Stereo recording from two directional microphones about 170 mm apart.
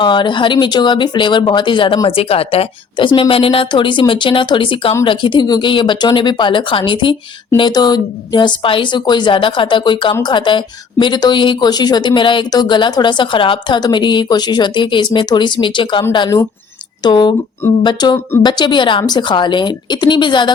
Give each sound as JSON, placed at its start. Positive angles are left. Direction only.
{"t": 0.0, "sound": "speech", "side_deg": 25}